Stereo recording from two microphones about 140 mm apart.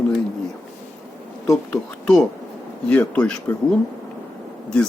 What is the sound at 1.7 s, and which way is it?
Speech, 5° left (ahead or behind).